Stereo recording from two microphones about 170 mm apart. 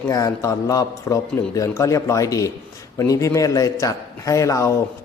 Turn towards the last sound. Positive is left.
turn(degrees=20)  # may be behind; listen again after turning